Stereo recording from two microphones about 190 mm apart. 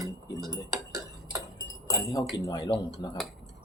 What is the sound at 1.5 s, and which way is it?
Speech, 20° left (ahead or behind).